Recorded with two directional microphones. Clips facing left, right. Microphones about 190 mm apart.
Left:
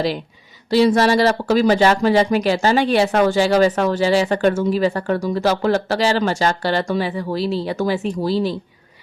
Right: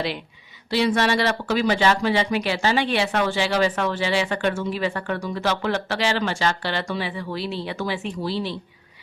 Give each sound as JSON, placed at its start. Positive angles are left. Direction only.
{"t": 0.7, "sound": "speech", "side_deg": 40}